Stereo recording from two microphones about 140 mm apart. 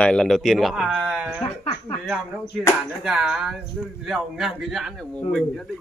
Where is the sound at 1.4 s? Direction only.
40° left (ahead or behind).